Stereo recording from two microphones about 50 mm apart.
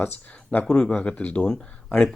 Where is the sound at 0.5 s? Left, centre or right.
Left.